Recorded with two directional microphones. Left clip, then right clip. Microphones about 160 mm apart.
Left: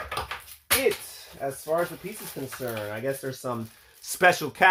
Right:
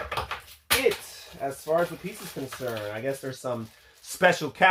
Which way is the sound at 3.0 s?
30° left (ahead or behind).